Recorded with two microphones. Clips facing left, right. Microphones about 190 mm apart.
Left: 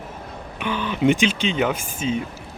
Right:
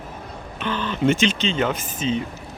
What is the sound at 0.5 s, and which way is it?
Speech, 10° left (ahead or behind).